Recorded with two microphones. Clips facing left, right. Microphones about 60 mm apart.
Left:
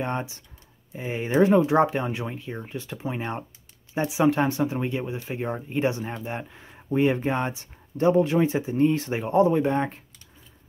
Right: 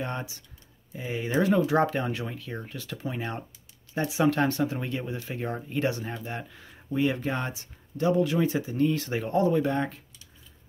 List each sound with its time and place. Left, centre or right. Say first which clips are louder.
0.0 s speech: left 5 dB; left